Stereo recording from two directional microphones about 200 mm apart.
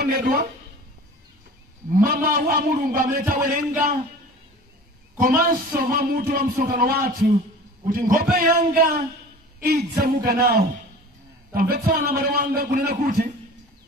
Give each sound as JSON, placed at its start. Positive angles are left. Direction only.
{"t": 0.0, "sound": "a man's voice", "side_deg": -50}
{"t": 2.0, "sound": "a man's voice", "side_deg": -45}
{"t": 5.4, "sound": "a man's voice", "side_deg": -45}